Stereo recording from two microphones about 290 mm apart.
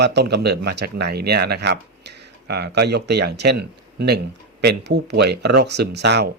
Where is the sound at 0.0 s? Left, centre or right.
Right.